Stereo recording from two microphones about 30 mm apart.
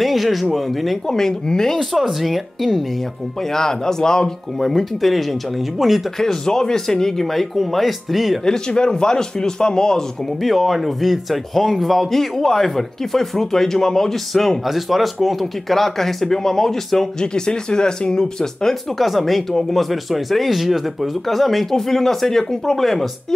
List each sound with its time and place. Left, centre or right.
0.0 s speech: centre
1.0 s speech: centre
2.0 s speech: centre
3.5 s speech: centre
4.6 s speech: centre
6.1 s speech: centre
8.5 s speech: left
10.4 s speech: centre
14.7 s speech: centre
15.7 s speech: centre
17.2 s speech: left
18.9 s speech: centre
21.7 s speech: centre